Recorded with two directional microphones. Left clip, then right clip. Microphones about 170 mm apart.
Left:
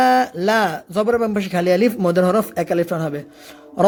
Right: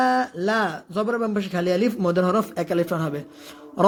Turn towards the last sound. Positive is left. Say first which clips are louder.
# left 3 dB
turn(degrees=10)  # may be behind; listen again after turning